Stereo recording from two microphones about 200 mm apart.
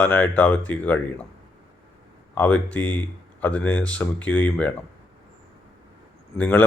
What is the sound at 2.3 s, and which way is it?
Speech, 10° left (ahead or behind).